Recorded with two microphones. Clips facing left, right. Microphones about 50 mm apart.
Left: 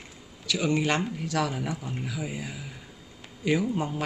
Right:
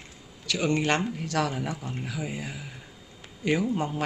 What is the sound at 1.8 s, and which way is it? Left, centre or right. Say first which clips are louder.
Speech: even; centre.